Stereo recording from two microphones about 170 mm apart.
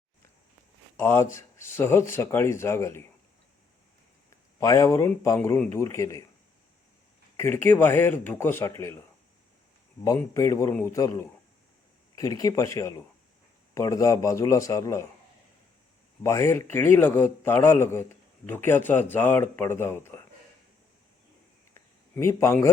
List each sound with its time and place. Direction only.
0.9 s speech: 15° left (ahead or behind)
4.6 s speech: 20° left (ahead or behind)
7.3 s speech: 15° left (ahead or behind)
10.0 s a man's voice: 20° left (ahead or behind)
16.2 s speech: 15° left (ahead or behind)
22.1 s speech: 15° left (ahead or behind)